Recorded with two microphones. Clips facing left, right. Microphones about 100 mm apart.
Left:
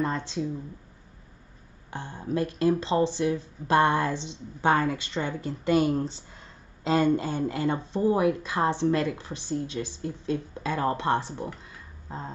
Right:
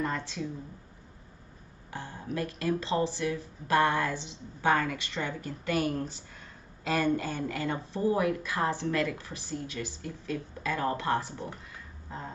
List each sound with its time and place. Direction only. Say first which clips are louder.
0.0 s speech: left 4 dB; 25° left (ahead or behind)
1.9 s speech: left 5 dB; 30° left (ahead or behind)